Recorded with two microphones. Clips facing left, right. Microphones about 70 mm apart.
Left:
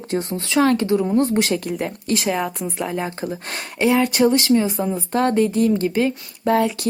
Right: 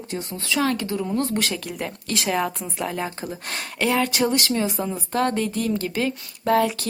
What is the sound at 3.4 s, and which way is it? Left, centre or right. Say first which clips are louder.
Speech: left 4 dB; left.